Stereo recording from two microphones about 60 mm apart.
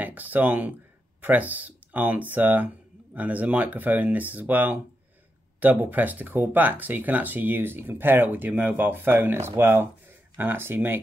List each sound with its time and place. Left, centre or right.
0.0 s speech: right